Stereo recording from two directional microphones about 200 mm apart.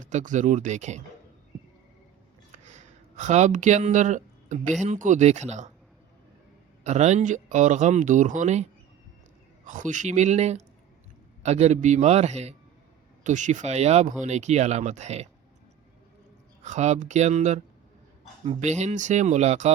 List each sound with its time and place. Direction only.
0.0 s speech: 40° right (ahead or behind)
2.6 s a sound: 35° right (ahead or behind)
4.8 s speech: 40° right (ahead or behind)
6.8 s speech: 35° right (ahead or behind)
9.6 s speech: 40° right (ahead or behind)
16.6 s speech: 35° right (ahead or behind)